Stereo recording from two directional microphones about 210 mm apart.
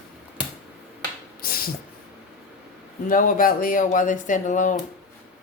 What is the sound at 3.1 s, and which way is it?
Speech, 40° left (ahead or behind).